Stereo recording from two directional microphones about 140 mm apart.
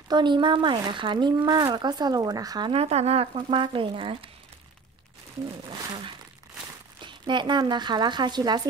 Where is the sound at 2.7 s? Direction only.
50° right (ahead or behind).